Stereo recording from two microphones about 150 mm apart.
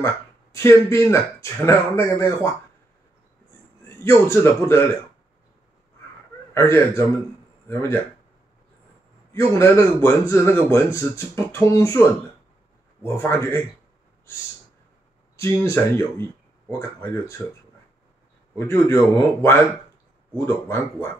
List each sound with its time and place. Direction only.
0.0 s a man's voice: 20° left (ahead or behind)
3.9 s a man's voice: 15° left (ahead or behind)
6.5 s a man's voice: 15° left (ahead or behind)
9.3 s a man's voice: 15° left (ahead or behind)
13.0 s a man's voice: 15° left (ahead or behind)
15.3 s speech: 20° left (ahead or behind)
18.7 s a man's voice: 15° left (ahead or behind)